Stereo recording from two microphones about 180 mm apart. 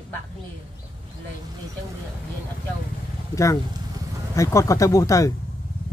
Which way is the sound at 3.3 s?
20° left (ahead or behind).